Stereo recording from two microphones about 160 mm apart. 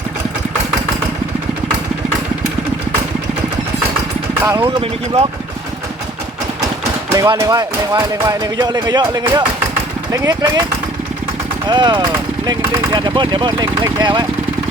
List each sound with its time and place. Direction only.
4.6 s speech: 35° right (ahead or behind)
7.1 s speech: 20° right (ahead or behind)
11.6 s speech: 30° right (ahead or behind)